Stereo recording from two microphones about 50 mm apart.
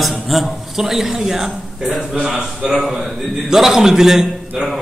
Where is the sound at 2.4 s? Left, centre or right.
Right.